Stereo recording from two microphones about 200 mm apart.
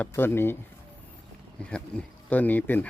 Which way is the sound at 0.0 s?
10° left (ahead or behind).